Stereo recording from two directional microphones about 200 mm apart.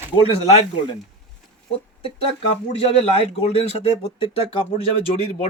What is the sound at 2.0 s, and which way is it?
A man's voice, 25° left (ahead or behind).